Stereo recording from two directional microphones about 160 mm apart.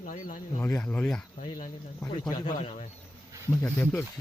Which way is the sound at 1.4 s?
55° left (ahead or behind).